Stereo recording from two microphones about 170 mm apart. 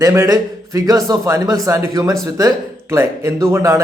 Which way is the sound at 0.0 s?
15° right (ahead or behind).